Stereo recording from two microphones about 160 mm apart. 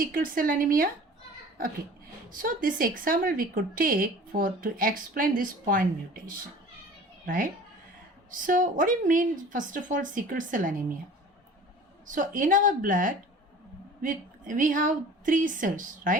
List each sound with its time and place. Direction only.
0.0 s a woman's voice: 60° right (ahead or behind)
2.3 s a woman's voice: 60° right (ahead or behind)
7.3 s a woman's voice: 60° right (ahead or behind)
12.0 s a woman's voice: 55° right (ahead or behind)